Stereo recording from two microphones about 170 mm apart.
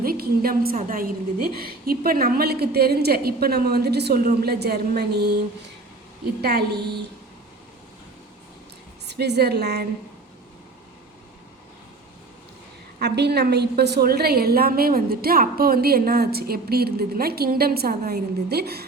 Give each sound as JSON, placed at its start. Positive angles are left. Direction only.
{"t": 0.0, "sound": "a woman's voice", "side_deg": -60}
{"t": 6.4, "sound": "a woman's voice", "side_deg": -70}
{"t": 9.0, "sound": "a woman's voice", "side_deg": -75}
{"t": 13.0, "sound": "a woman's voice", "side_deg": -75}